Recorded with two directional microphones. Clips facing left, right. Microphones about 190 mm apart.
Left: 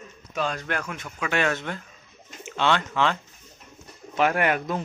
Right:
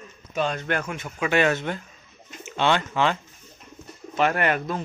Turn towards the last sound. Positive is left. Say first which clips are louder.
# even
turn(degrees=10)  # may be behind; listen again after turning